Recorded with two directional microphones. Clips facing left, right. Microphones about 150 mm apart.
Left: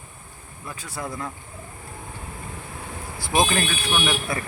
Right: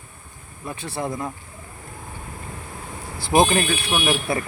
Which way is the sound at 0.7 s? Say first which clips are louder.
Right 5 dB; 30° right (ahead or behind).